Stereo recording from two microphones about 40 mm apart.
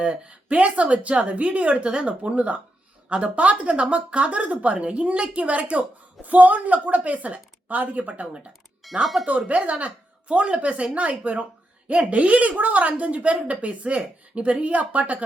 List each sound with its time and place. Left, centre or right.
0.0 s a woman's voice: right
8.8 s music: centre
9.5 s a woman's voice: right